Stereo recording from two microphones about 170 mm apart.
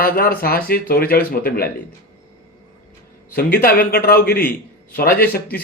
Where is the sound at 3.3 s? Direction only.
60° left (ahead or behind).